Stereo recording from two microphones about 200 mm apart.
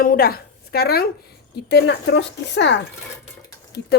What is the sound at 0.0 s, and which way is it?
A woman's voice, 45° left (ahead or behind).